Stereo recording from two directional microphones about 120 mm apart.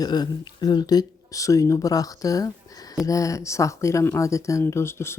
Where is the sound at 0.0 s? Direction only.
35° left (ahead or behind).